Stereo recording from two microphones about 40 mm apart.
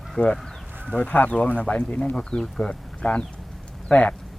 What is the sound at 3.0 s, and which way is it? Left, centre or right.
Speech, left.